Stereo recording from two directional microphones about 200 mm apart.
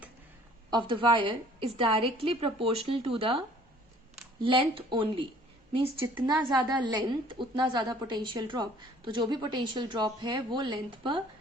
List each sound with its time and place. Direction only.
0.7 s a woman's voice: 25° right (ahead or behind)
4.4 s a woman's voice: 25° right (ahead or behind)